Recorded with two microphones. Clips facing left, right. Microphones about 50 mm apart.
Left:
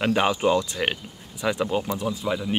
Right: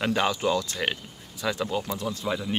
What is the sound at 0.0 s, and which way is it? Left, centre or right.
Speech, centre.